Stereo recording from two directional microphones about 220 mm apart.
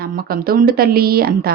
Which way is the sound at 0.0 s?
45° right (ahead or behind).